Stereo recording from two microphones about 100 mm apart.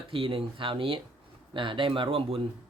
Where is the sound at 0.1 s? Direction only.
60° right (ahead or behind).